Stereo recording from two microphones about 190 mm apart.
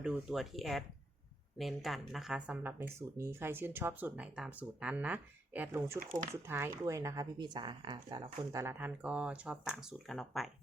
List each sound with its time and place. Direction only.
0.0 s speech: 5° right (ahead or behind); by 7.9 s 25° right (ahead or behind)
8.5 s speech: 10° right (ahead or behind)